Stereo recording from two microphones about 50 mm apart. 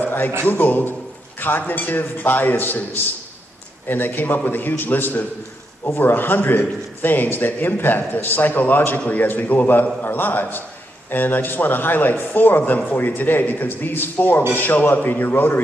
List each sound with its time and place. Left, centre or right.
0.0 s a sound: left
0.4 s a man's voice: left
3.9 s a man's voice: left